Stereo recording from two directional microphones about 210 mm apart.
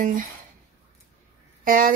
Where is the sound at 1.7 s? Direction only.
40° right (ahead or behind).